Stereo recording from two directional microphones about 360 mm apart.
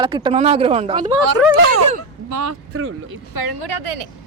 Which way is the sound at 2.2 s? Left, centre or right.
Right.